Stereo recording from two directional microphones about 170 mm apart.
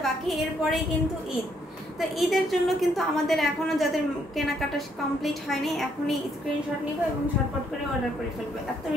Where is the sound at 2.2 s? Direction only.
Centre (ahead or behind).